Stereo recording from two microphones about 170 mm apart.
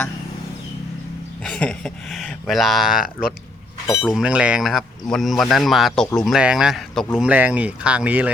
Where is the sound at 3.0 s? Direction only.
65° left (ahead or behind).